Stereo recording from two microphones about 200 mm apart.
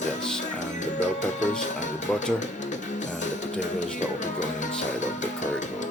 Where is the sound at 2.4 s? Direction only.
40° left (ahead or behind).